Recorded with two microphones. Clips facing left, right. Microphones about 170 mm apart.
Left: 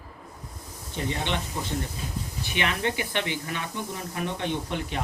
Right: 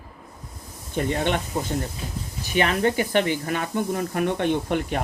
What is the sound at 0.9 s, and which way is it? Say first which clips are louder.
Speech: right 6 dB; 50° right (ahead or behind).